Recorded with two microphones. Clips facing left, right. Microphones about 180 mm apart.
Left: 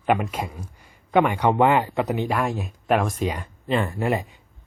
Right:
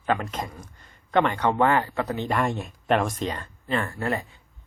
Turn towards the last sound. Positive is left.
turn(degrees=15)  # may be behind; listen again after turning